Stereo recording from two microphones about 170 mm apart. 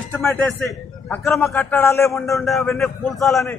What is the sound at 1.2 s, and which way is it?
Speech, centre (ahead or behind).